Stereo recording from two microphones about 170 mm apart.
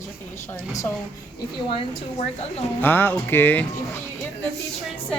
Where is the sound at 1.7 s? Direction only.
35° left (ahead or behind).